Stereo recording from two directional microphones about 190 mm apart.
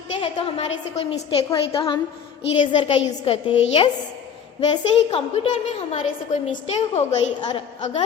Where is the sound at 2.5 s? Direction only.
30° left (ahead or behind).